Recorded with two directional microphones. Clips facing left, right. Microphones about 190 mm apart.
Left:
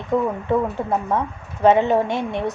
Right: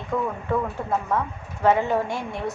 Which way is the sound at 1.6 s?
20° left (ahead or behind).